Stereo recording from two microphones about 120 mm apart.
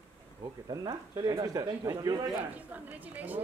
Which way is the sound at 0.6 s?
35° right (ahead or behind).